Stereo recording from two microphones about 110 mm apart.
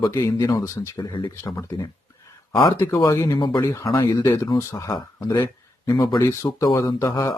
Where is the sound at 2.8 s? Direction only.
25° left (ahead or behind).